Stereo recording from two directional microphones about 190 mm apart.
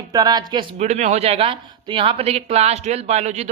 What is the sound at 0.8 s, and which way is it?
Speech, 35° right (ahead or behind).